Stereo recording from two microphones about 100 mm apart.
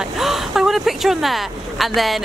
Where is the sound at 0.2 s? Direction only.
5° right (ahead or behind).